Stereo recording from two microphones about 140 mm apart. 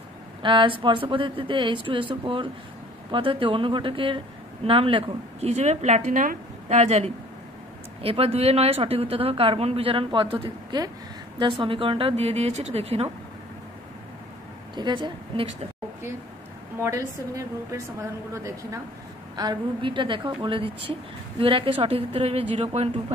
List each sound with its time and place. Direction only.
0.4 s a woman's voice: 35° right (ahead or behind); by 7.1 s 55° right (ahead or behind)
8.0 s a woman's voice: 45° right (ahead or behind)
14.8 s speech: 35° right (ahead or behind)
16.8 s a woman's voice: 20° right (ahead or behind)
19.3 s speech: 35° right (ahead or behind)